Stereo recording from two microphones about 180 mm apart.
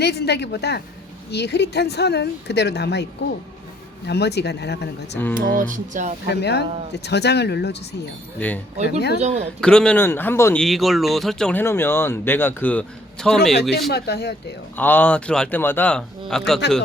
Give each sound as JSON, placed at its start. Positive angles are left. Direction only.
{"t": 0.0, "sound": "speech", "side_deg": 65}
{"t": 5.3, "sound": "music", "side_deg": -50}
{"t": 6.2, "sound": "speech", "side_deg": 65}
{"t": 8.4, "sound": "a man's voice", "side_deg": 10}
{"t": 8.8, "sound": "speech", "side_deg": 65}
{"t": 9.6, "sound": "a man's voice", "side_deg": 5}
{"t": 10.6, "sound": "a man's voice", "side_deg": 0}
{"t": 13.6, "sound": "speech", "side_deg": 65}
{"t": 14.8, "sound": "a man's voice", "side_deg": 10}